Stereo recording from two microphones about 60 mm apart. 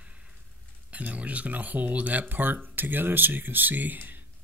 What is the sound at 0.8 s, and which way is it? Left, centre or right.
Speech, right.